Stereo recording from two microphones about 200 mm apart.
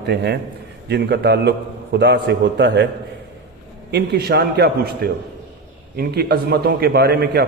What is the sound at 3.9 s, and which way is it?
A man's voice, 55° right (ahead or behind).